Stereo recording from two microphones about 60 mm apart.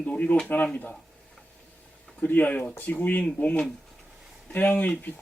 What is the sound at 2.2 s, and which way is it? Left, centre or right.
Speech, left.